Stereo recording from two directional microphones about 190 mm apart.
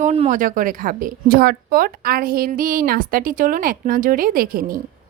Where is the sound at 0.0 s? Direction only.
35° right (ahead or behind).